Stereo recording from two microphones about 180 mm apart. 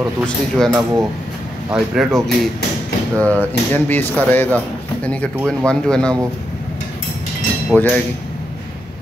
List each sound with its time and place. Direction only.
0.6 s speech: centre (ahead or behind)
3.2 s speech: 10° left (ahead or behind)
7.7 s speech: 10° left (ahead or behind)